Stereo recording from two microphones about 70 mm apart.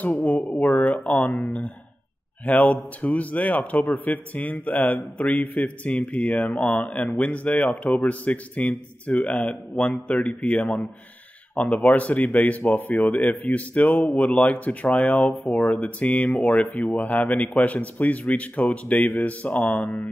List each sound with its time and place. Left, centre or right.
0.0 s a man's voice: left
0.4 s speech: centre
0.7 s a man's voice: left